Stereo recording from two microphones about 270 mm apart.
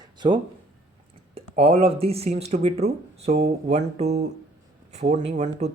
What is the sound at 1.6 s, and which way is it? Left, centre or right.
Speech, right.